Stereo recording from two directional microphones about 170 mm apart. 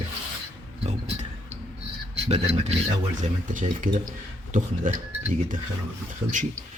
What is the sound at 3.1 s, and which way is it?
Speech, 50° right (ahead or behind).